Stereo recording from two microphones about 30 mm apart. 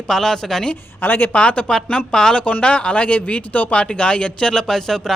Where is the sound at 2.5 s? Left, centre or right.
Left.